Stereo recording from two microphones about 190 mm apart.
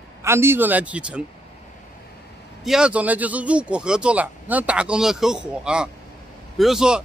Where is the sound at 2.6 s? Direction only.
5° right (ahead or behind).